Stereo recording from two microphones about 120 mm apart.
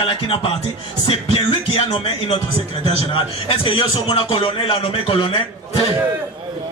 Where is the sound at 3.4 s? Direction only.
50° left (ahead or behind).